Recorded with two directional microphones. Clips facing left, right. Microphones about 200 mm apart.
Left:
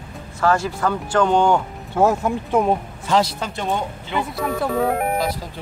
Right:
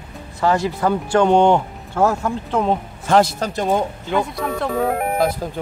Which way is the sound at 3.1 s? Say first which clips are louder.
Right 4 dB; 50° right (ahead or behind).